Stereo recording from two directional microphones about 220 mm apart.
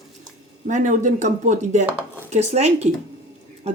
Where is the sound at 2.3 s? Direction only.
30° right (ahead or behind).